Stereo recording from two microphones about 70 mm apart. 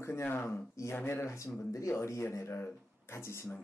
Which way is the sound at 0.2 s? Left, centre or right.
Left.